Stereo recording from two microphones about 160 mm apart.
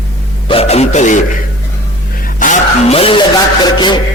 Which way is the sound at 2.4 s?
50° left (ahead or behind).